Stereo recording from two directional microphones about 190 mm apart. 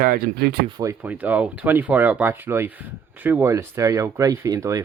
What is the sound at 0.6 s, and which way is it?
Speech, 20° right (ahead or behind).